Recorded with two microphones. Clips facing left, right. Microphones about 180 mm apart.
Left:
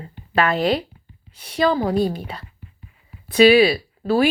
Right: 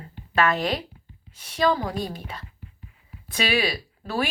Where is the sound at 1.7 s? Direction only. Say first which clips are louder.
Left 6 dB; 35° left (ahead or behind).